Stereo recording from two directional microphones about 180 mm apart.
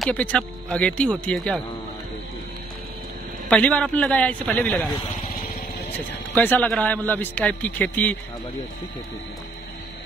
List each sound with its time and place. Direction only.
0.0 s a man's voice: 5° left (ahead or behind)
3.4 s a man's voice: 5° left (ahead or behind)
6.3 s a man's voice: 10° left (ahead or behind)